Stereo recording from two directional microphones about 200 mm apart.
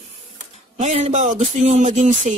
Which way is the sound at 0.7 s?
35° right (ahead or behind).